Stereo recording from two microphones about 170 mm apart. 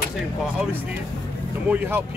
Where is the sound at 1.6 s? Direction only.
10° right (ahead or behind).